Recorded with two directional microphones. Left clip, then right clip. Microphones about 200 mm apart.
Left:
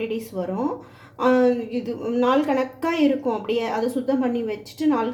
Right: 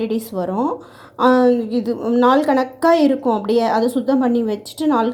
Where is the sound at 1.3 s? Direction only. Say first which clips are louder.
Right 4 dB; 15° right (ahead or behind).